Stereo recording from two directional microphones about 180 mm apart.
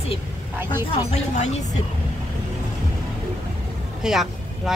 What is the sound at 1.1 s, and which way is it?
Speech, 40° left (ahead or behind).